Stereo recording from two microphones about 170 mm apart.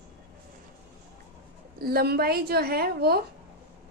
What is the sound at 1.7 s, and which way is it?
A woman's voice, 65° right (ahead or behind).